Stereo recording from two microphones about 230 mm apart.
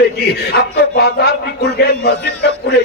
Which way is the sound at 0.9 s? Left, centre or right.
Left.